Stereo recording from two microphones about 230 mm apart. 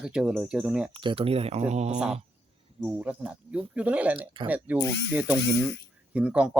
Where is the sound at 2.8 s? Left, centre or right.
Centre.